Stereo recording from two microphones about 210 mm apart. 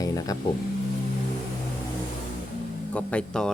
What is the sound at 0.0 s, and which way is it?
Vehicle, 15° left (ahead or behind).